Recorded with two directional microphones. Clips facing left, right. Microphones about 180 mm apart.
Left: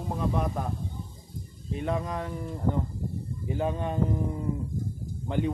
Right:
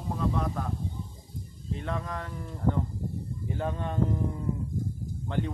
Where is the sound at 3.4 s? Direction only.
10° left (ahead or behind).